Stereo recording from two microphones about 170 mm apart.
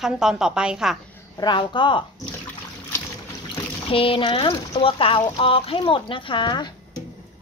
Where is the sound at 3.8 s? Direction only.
30° left (ahead or behind).